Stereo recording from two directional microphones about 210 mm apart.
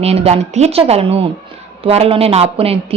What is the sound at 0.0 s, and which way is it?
A woman's voice, 30° right (ahead or behind).